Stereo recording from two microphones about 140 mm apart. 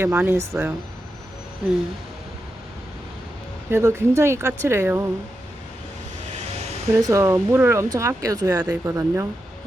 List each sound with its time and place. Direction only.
0.0 s speech: 15° right (ahead or behind)
3.7 s speech: 20° right (ahead or behind)
6.9 s speech: 20° right (ahead or behind)